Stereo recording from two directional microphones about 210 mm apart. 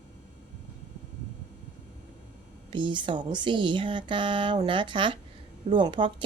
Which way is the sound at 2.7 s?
20° right (ahead or behind).